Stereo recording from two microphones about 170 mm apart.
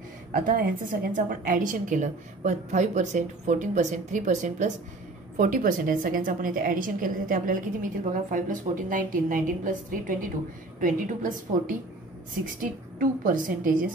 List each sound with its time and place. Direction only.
0.3 s a woman's voice: 55° right (ahead or behind)